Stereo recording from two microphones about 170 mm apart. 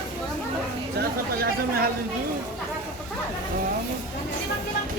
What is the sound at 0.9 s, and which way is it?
Speech, 60° right (ahead or behind).